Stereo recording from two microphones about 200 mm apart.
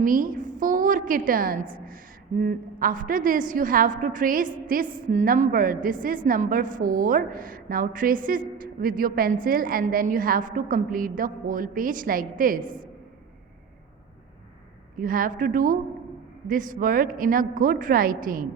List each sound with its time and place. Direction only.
0.0 s a woman's voice: 45° right (ahead or behind)
14.9 s a woman's voice: 45° right (ahead or behind)